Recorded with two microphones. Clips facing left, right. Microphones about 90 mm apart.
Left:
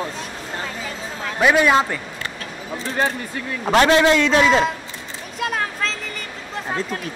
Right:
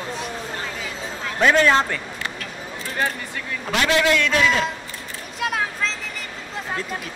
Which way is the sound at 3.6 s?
35° left (ahead or behind).